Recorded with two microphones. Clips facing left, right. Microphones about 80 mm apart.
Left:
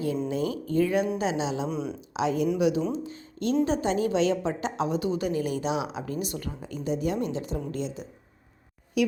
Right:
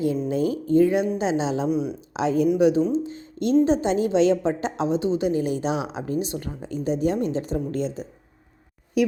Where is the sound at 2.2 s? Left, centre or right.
Right.